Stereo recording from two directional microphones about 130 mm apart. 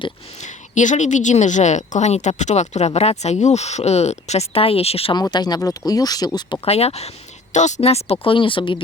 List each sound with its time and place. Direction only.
0.3 s a woman's voice: 65° left (ahead or behind); by 5.1 s 50° left (ahead or behind)
5.1 s speech: 30° left (ahead or behind)
6.7 s speech: 55° left (ahead or behind)
7.5 s speech: 65° left (ahead or behind); by 8.8 s 40° left (ahead or behind)